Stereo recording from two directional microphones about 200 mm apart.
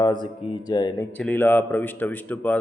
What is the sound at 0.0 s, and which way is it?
Speech, 20° left (ahead or behind).